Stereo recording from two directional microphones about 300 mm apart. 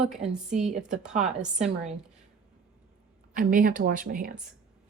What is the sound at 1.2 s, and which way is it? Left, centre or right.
Speech, right.